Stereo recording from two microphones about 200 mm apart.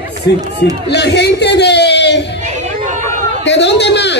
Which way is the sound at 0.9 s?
55° left (ahead or behind).